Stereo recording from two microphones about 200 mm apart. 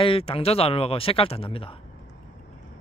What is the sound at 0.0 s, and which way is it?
Speech, 30° left (ahead or behind).